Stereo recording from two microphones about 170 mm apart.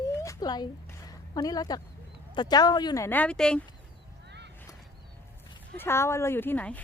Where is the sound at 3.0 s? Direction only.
10° left (ahead or behind).